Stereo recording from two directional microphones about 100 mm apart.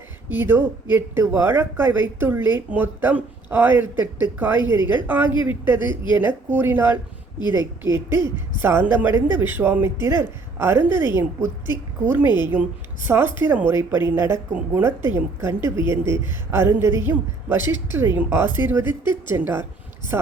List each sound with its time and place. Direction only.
0.3 s speech: 20° right (ahead or behind)
8.6 s speech: 20° right (ahead or behind)